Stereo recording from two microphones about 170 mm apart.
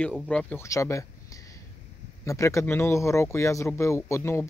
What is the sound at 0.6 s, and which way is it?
Speech, 15° left (ahead or behind).